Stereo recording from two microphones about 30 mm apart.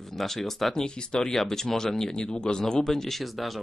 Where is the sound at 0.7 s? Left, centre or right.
Left.